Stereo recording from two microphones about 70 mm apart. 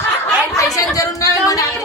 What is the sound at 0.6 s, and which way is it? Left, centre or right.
Speech, left.